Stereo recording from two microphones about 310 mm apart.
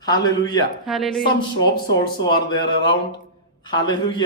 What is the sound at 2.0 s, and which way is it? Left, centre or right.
Speech, centre.